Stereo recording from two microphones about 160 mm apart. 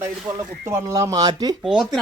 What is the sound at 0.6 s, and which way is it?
Speech, 20° right (ahead or behind).